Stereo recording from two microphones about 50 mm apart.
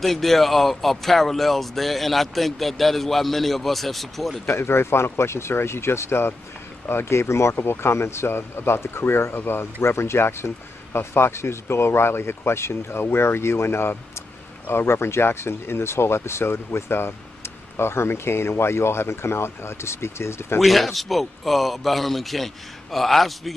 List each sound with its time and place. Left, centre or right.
0.0 s speech: centre
4.5 s speech: left
7.5 s speech: left
20.5 s speech: centre